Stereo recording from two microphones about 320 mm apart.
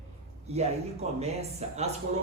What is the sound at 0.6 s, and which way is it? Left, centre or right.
Speech, centre.